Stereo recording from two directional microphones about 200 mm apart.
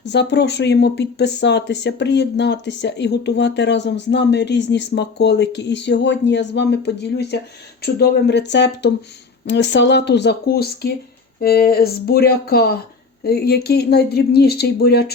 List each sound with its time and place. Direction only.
0.0 s speech: 60° left (ahead or behind)